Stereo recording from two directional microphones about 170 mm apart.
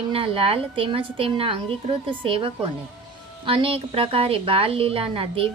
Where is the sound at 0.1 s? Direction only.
35° right (ahead or behind).